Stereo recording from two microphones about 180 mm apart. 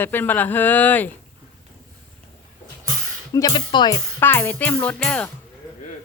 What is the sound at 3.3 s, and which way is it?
Speech, 20° left (ahead or behind).